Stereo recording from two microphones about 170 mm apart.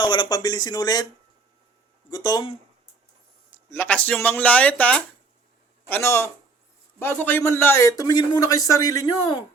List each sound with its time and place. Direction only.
0.0 s a man's voice: 25° left (ahead or behind)
2.0 s a man's voice: 25° left (ahead or behind)
3.7 s a man's voice: 10° left (ahead or behind)